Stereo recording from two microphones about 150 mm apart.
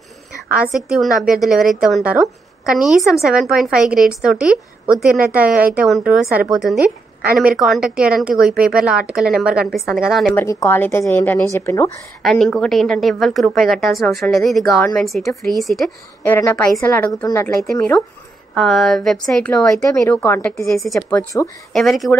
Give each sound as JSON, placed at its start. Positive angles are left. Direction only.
{"t": 0.5, "sound": "a woman's voice", "side_deg": -5}
{"t": 10.3, "sound": "a woman's voice", "side_deg": 20}
{"t": 12.2, "sound": "a woman's voice", "side_deg": 0}
{"t": 16.3, "sound": "a woman's voice", "side_deg": 15}
{"t": 18.5, "sound": "a woman's voice", "side_deg": 0}
{"t": 20.1, "sound": "a woman's voice", "side_deg": 15}
{"t": 20.7, "sound": "a woman's voice", "side_deg": 0}
{"t": 21.7, "sound": "a woman's voice", "side_deg": 0}